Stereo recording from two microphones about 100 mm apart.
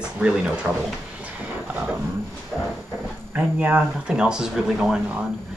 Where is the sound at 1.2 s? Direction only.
15° right (ahead or behind).